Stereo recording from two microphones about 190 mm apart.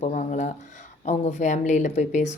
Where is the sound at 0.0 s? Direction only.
40° left (ahead or behind).